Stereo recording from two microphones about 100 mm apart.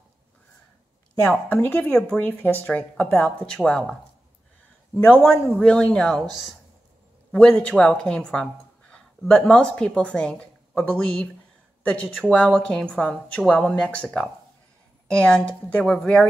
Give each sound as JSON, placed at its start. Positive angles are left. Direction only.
{"t": 1.5, "sound": "a woman's voice", "side_deg": 20}
{"t": 5.0, "sound": "a woman's voice", "side_deg": 10}
{"t": 7.3, "sound": "a woman's voice", "side_deg": 10}
{"t": 15.0, "sound": "a woman's voice", "side_deg": 10}
{"t": 15.8, "sound": "speech", "side_deg": 5}